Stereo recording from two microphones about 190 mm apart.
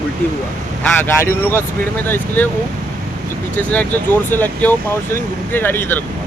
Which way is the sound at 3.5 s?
10° left (ahead or behind).